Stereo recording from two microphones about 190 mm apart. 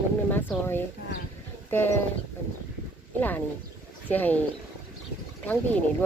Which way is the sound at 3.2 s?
10° left (ahead or behind).